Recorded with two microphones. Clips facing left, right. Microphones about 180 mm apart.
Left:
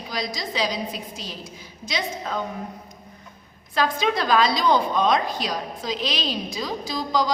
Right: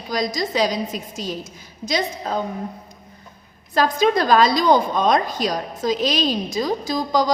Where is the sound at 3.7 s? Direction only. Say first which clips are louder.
Right 5 dB; 40° right (ahead or behind).